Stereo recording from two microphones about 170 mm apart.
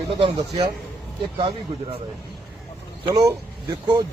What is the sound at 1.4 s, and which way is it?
Speech, 30° right (ahead or behind).